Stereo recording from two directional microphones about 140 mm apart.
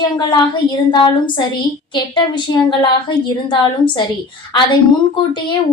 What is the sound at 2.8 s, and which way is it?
A woman's voice, 35° left (ahead or behind).